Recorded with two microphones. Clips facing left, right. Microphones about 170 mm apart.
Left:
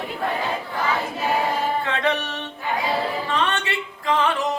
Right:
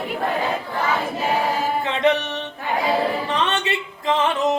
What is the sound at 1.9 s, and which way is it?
Music, 20° right (ahead or behind).